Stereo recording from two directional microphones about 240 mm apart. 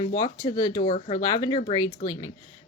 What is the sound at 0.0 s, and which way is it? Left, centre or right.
Speech, centre.